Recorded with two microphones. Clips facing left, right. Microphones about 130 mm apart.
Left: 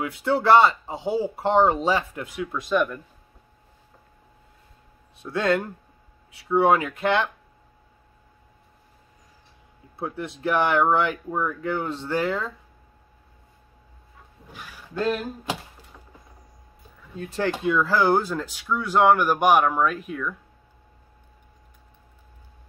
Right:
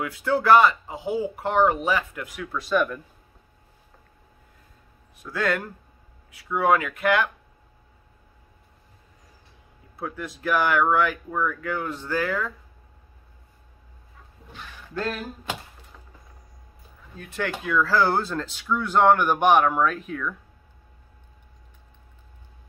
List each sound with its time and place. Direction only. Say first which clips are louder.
0.0 s speech: left 1 dB; 25° left (ahead or behind)
5.2 s speech: left 3 dB; 25° left (ahead or behind)
9.9 s speech: left 2 dB; 25° left (ahead or behind)
14.5 s a sound: even; 10° left (ahead or behind)
17.2 s speech: left 5 dB; 30° left (ahead or behind); by 20.3 s 5° left (ahead or behind)